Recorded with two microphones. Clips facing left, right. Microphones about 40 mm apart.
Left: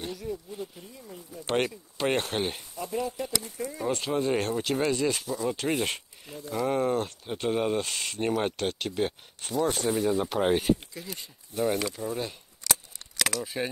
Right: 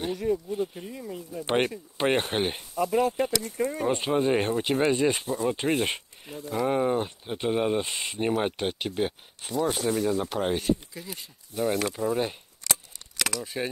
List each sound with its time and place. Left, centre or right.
0.1 s speech: right
0.5 s speech: right
2.7 s speech: right
3.9 s speech: right; by 10.8 s centre
10.9 s speech: centre
11.9 s speech: right
13.4 s speech: centre